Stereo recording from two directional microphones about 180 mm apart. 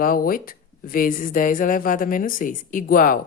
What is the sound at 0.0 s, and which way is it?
Speech, 50° left (ahead or behind).